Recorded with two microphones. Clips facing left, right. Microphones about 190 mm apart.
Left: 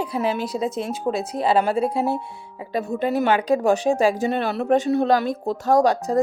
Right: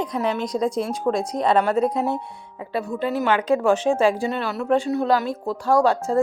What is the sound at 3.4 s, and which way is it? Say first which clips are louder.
Speech: even; 35° left (ahead or behind).